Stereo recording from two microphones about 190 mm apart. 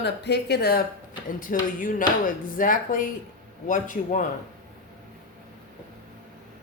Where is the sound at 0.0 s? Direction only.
60° left (ahead or behind).